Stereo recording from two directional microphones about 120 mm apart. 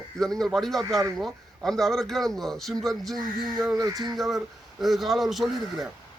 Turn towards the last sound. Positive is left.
turn(degrees=0)  # may be behind; listen again after turning